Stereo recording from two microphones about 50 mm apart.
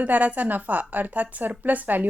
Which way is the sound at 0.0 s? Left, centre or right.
Right.